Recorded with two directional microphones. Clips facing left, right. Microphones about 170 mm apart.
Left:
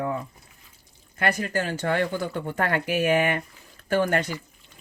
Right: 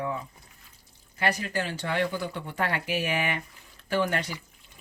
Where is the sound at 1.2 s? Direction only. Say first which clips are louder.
Left 3 dB; 50° left (ahead or behind).